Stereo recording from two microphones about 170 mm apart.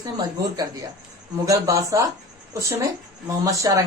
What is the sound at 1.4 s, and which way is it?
Speech, 20° right (ahead or behind).